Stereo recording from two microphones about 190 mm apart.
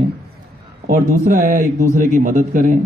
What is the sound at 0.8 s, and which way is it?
A man's voice, 45° right (ahead or behind).